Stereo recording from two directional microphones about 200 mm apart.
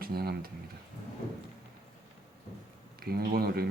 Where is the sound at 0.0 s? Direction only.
50° right (ahead or behind).